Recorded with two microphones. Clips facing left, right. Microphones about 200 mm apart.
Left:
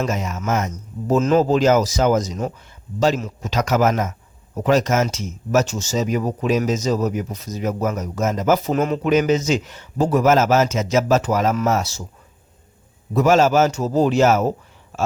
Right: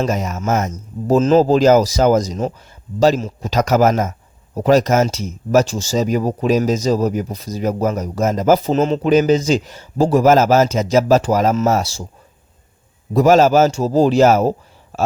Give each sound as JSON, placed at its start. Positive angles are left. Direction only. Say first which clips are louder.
{"t": 0.0, "sound": "speech", "louder": "right 4 dB", "side_deg": -40}
{"t": 0.7, "sound": "speech", "louder": "right 4 dB", "side_deg": -30}
{"t": 13.1, "sound": "speech", "louder": "right 4 dB", "side_deg": -35}